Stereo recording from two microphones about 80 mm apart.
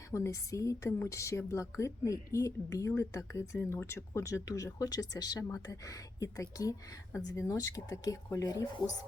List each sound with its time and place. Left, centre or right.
0.1 s a woman's voice: left
7.5 s speech: left